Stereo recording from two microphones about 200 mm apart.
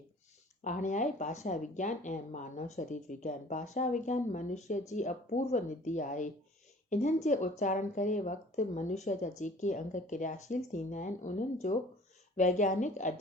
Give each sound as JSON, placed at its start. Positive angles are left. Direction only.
{"t": 0.6, "sound": "speech", "side_deg": 40}